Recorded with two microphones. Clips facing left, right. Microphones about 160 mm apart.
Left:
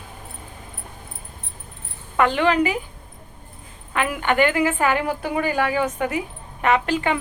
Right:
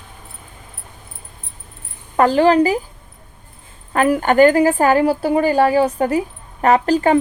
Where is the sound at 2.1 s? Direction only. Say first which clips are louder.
Right 6 dB; 35° right (ahead or behind).